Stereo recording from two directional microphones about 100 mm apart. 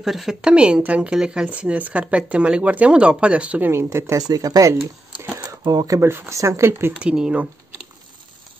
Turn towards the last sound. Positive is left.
turn(degrees=-10)  # may be behind; listen again after turning